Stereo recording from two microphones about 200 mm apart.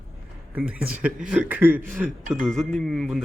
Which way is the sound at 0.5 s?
5° right (ahead or behind).